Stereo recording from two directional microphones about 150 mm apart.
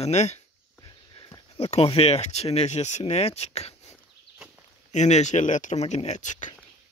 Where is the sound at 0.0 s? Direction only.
50° left (ahead or behind).